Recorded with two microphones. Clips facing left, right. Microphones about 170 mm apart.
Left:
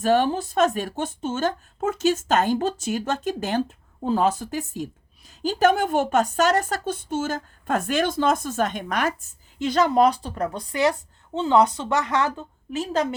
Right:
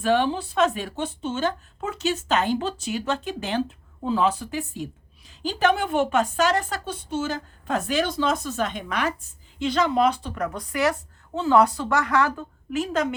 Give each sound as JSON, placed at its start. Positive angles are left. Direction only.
{"t": 0.0, "sound": "a woman's voice", "side_deg": 45}